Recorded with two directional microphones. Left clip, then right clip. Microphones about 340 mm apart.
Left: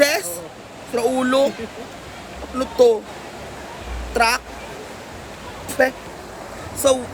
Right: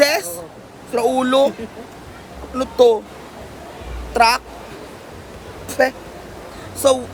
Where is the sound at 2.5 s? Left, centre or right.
Centre.